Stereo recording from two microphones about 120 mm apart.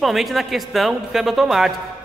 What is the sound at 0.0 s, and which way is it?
Speech, centre (ahead or behind).